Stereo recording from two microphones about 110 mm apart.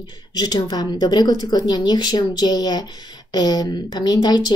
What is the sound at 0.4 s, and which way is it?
Speech, 40° left (ahead or behind).